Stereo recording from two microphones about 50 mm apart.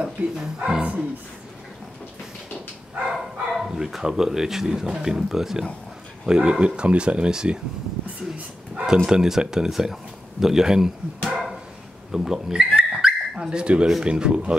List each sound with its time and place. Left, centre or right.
0.0 s speech: centre
3.1 s speech: centre
8.8 s speech: centre